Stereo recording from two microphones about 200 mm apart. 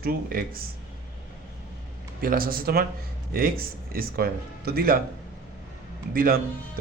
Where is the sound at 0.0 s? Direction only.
50° right (ahead or behind).